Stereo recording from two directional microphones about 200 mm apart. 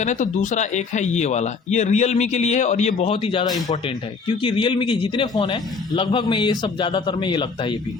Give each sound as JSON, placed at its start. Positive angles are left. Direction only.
{"t": 0.0, "sound": "speech", "side_deg": 40}
{"t": 4.4, "sound": "a man's voice", "side_deg": 25}